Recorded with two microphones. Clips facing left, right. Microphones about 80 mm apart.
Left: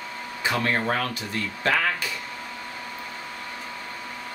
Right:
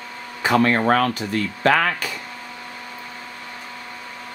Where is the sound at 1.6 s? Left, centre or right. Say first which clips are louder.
Right 6 dB; right.